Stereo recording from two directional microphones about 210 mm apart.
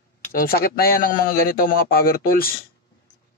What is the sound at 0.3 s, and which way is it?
Speech, 45° left (ahead or behind).